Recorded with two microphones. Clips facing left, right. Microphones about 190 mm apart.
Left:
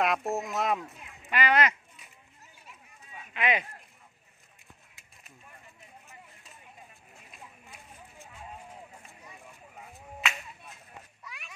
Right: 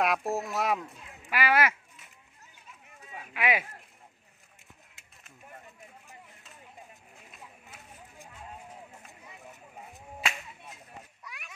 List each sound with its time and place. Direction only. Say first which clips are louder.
0.0 s speech: even; centre (ahead or behind)
3.3 s speech: even; 5° right (ahead or behind)
9.5 s whip: right 1 dB; 20° right (ahead or behind)